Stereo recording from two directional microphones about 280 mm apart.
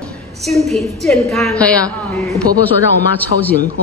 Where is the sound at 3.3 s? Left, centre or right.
Right.